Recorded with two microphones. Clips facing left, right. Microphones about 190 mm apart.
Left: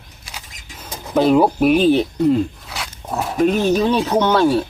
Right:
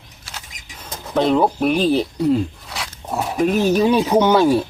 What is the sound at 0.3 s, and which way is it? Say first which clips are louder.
Speech: left 1 dB; 10° left (ahead or behind).